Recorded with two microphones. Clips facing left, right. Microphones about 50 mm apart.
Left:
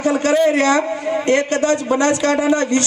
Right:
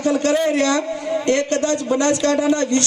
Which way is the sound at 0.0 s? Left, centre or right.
Left.